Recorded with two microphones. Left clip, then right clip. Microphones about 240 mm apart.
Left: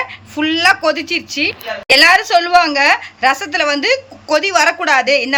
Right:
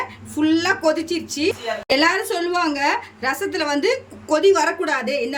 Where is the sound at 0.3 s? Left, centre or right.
Centre.